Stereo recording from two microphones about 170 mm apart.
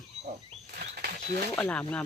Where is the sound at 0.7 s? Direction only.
70° right (ahead or behind).